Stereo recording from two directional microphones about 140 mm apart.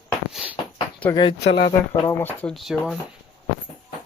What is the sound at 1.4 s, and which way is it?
Speech, 45° left (ahead or behind).